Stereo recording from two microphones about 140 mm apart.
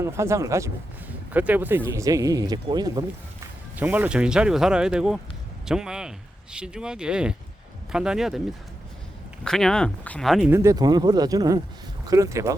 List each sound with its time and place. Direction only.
0.0 s speech: 20° right (ahead or behind)
3.8 s speech: 10° right (ahead or behind)
9.4 s speech: 5° left (ahead or behind)
10.5 s speech: 20° right (ahead or behind)